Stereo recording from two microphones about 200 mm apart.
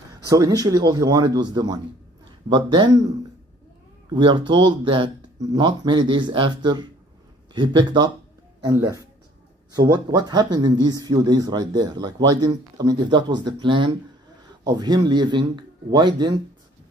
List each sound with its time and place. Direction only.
0.2 s speech: 15° right (ahead or behind)
4.1 s speech: 25° right (ahead or behind)